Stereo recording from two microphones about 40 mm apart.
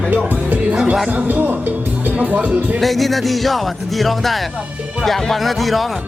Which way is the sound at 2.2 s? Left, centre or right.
Right.